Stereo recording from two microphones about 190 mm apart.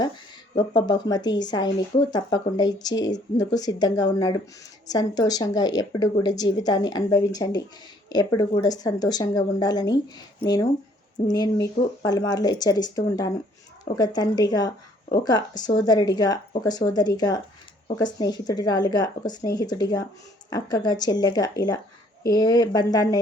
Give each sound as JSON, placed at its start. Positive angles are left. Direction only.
{"t": 0.8, "sound": "speech", "side_deg": 20}